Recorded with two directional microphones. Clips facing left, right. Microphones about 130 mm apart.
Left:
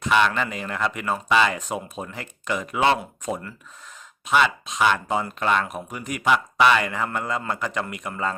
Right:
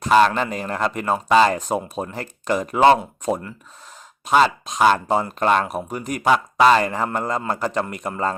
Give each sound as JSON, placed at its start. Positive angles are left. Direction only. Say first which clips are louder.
{"t": 0.0, "sound": "speech", "louder": "right 5 dB", "side_deg": -35}